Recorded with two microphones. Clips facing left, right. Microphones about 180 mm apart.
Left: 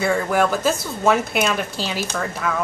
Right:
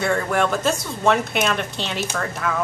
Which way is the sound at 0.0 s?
5° left (ahead or behind).